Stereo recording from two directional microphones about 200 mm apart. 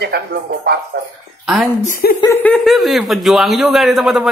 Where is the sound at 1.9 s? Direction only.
50° left (ahead or behind).